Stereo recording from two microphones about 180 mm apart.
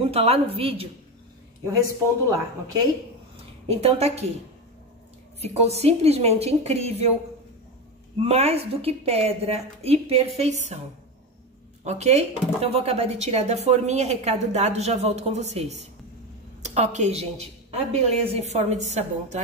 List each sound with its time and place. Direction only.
0.1 s speech: 35° right (ahead or behind)
1.6 s a woman's voice: 20° right (ahead or behind)
3.6 s speech: 35° right (ahead or behind)
5.4 s speech: 35° right (ahead or behind)
8.2 s speech: 35° right (ahead or behind)
11.8 s a woman's voice: 40° right (ahead or behind)